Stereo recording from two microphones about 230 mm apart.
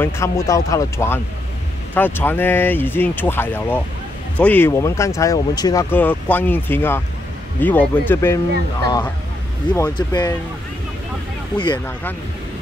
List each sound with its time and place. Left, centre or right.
0.0 s speech: centre
9.9 s speech: centre
11.5 s speech: centre